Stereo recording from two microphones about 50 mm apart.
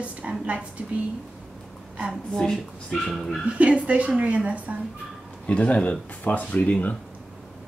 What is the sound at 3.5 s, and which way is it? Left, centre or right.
A woman's voice, right.